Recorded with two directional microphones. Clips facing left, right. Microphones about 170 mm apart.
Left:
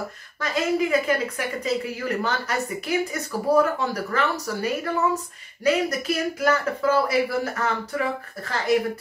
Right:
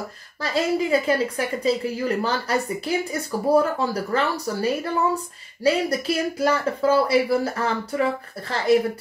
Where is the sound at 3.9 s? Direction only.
30° right (ahead or behind).